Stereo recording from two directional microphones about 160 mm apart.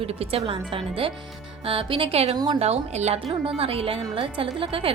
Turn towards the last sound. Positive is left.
turn(degrees=-35)  # may be behind; listen again after turning